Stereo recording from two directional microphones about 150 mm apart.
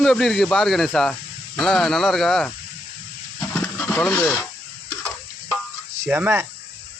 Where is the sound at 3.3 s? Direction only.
15° left (ahead or behind).